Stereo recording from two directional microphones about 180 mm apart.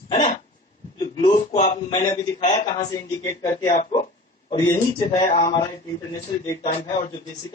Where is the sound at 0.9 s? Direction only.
25° left (ahead or behind).